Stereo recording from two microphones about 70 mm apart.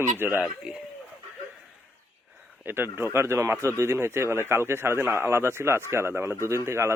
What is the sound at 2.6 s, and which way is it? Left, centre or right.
Speech, right.